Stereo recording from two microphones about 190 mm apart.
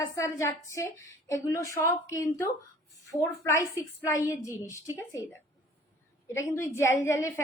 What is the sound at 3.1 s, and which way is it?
A woman's voice, 15° left (ahead or behind).